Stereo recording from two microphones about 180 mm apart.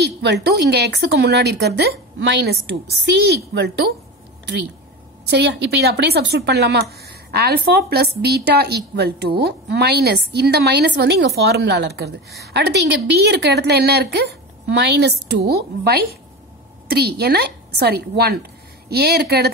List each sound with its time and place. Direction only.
0.0 s speech: 70° right (ahead or behind)
5.2 s a woman's voice: 70° right (ahead or behind)